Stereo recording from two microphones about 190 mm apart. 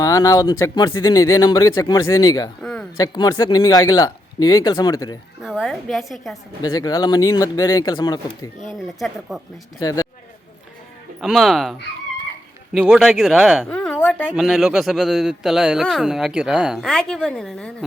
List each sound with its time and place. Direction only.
0.0 s speech: 20° left (ahead or behind)
2.6 s a sound: 5° left (ahead or behind)
3.0 s speech: 20° left (ahead or behind)
5.4 s speech: centre (ahead or behind)
6.6 s speech: 20° left (ahead or behind)
8.6 s speech: centre (ahead or behind)
9.8 s speech: 20° left (ahead or behind)
11.2 s speech: centre (ahead or behind)